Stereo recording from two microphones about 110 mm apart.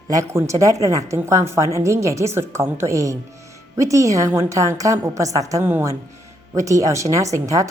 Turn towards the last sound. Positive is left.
turn(degrees=-30)  # may be behind; listen again after turning